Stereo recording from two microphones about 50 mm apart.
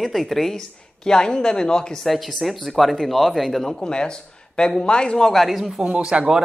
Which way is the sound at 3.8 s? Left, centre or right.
Centre.